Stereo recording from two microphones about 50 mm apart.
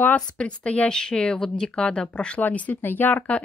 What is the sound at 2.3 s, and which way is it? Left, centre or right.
Speech, left.